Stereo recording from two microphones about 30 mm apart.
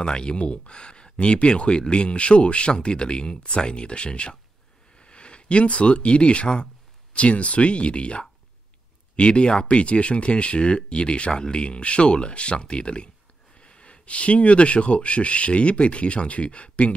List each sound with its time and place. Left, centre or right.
0.0 s speech: left